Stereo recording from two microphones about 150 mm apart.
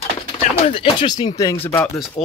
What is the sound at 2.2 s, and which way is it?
Speech, 40° left (ahead or behind).